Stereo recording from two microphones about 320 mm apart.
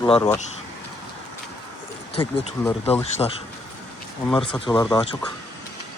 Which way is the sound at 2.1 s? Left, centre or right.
Centre.